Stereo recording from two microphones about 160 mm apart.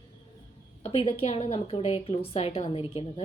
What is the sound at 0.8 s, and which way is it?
A woman's voice, 35° left (ahead or behind).